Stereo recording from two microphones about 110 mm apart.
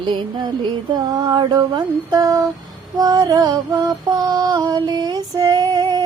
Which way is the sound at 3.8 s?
35° right (ahead or behind).